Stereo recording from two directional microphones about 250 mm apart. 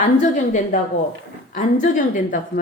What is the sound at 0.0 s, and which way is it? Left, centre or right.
A woman's voice, left.